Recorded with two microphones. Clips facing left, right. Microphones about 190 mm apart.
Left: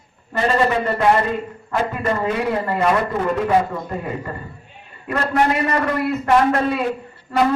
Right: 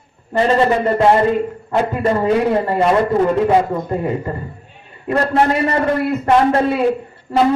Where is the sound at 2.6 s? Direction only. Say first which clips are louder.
Right 4 dB; 30° right (ahead or behind).